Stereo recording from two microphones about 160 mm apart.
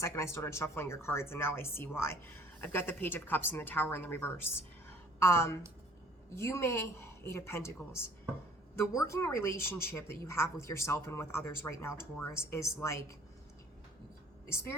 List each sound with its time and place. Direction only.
0.0 s speech: 15° left (ahead or behind)
4.9 s a sound: 15° left (ahead or behind)
6.3 s speech: 15° left (ahead or behind)
14.4 s a woman's voice: 15° left (ahead or behind)